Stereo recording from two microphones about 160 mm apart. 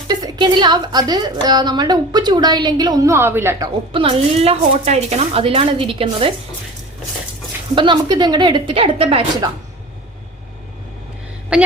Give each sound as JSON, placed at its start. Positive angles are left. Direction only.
{"t": 0.1, "sound": "a woman's voice", "side_deg": -25}
{"t": 3.9, "sound": "speech", "side_deg": -35}
{"t": 7.8, "sound": "a woman's voice", "side_deg": -30}
{"t": 11.5, "sound": "a woman's voice", "side_deg": -5}